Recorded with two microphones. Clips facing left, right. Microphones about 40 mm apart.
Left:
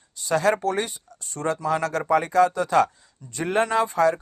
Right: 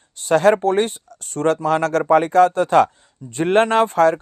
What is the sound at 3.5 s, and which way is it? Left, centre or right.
Speech, right.